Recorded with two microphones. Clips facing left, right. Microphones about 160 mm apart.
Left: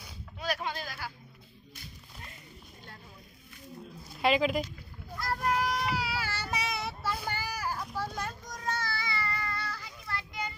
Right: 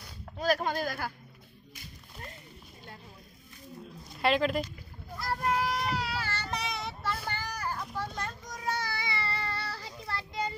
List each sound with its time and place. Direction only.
0.4 s speech: 45° right (ahead or behind)
3.8 s a sound: centre (ahead or behind)
8.5 s child singing: 10° right (ahead or behind); by 10.5 s 30° right (ahead or behind)